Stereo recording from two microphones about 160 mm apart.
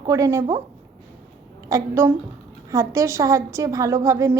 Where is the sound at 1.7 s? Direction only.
15° right (ahead or behind).